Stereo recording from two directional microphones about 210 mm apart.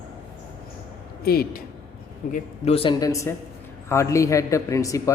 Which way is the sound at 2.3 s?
30° left (ahead or behind).